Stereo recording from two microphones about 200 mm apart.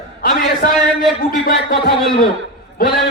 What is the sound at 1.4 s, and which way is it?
Speech, 50° left (ahead or behind).